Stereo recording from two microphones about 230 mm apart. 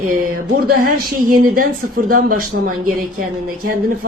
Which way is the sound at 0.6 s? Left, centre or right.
Right.